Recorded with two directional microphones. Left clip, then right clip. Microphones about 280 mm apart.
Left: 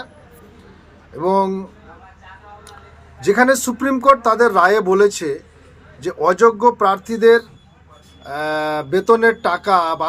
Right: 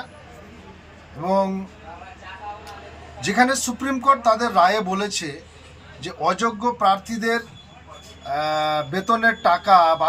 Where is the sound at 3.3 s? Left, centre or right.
Left.